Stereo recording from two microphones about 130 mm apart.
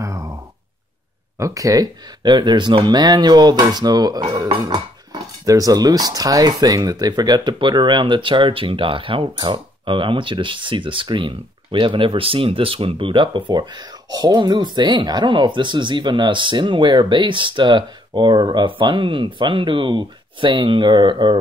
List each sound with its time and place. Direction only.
0.0 s sigh: 25° right (ahead or behind)
1.4 s speech: 25° right (ahead or behind)